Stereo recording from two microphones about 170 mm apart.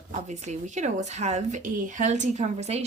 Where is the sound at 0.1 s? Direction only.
45° right (ahead or behind).